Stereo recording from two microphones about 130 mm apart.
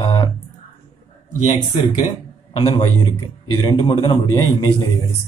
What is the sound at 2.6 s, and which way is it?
Speech, 50° left (ahead or behind).